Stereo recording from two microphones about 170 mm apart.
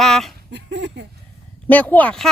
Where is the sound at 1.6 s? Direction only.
10° left (ahead or behind).